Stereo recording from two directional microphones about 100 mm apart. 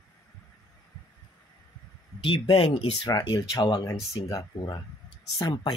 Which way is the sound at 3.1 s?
35° left (ahead or behind).